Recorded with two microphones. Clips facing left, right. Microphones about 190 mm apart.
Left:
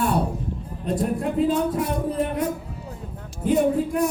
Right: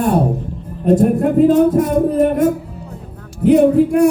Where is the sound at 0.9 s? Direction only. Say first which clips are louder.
Right 11 dB; 50° right (ahead or behind).